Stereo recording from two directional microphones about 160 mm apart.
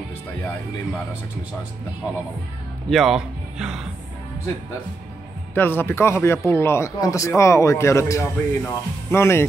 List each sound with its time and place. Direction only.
2.9 s speech: centre (ahead or behind)
5.5 s speech: 10° left (ahead or behind)